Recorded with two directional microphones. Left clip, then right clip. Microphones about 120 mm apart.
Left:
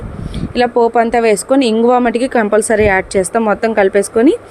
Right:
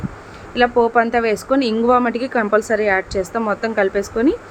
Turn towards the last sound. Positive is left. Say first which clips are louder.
# left 7 dB
turn(degrees=50)  # may be behind; listen again after turning